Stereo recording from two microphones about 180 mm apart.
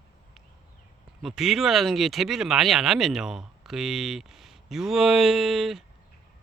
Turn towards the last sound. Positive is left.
turn(degrees=0)  # may be behind; listen again after turning